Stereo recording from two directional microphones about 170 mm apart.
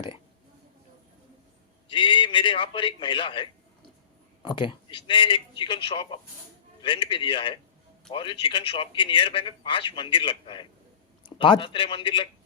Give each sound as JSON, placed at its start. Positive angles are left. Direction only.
{"t": 1.9, "sound": "speech", "side_deg": 30}